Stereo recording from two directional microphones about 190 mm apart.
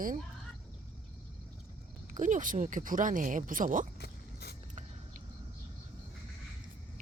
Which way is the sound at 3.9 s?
55° left (ahead or behind).